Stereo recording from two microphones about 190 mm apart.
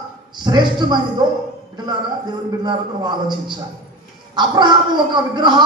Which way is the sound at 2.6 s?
25° right (ahead or behind).